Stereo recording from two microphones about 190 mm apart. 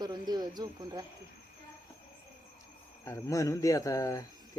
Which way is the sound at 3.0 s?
15° left (ahead or behind).